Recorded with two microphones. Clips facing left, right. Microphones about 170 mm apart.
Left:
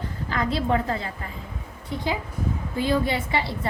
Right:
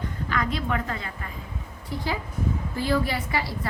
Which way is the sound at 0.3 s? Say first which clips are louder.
Left 4 dB; 30° left (ahead or behind).